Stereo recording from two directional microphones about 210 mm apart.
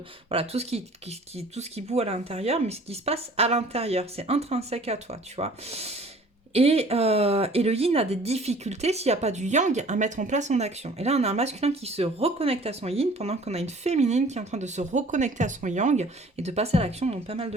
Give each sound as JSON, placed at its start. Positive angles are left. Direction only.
{"t": 0.3, "sound": "speech", "side_deg": -30}